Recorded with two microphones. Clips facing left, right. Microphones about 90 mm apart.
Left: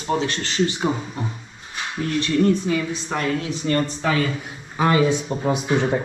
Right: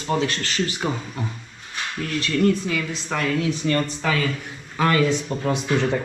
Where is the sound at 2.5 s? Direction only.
20° left (ahead or behind).